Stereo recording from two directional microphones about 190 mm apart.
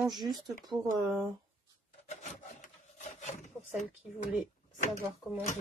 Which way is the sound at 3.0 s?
40° left (ahead or behind).